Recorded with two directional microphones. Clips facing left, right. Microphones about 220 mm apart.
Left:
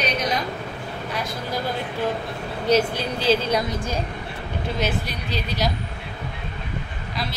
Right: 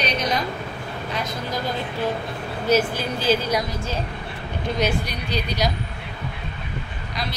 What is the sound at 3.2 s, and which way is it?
Speech, 25° left (ahead or behind).